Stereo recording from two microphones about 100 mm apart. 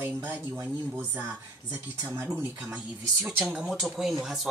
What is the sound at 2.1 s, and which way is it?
Speech, 20° right (ahead or behind).